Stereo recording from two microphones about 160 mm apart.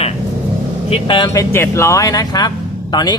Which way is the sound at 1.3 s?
15° left (ahead or behind).